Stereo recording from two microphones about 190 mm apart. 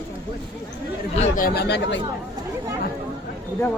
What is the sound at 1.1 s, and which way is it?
Speech, 35° left (ahead or behind).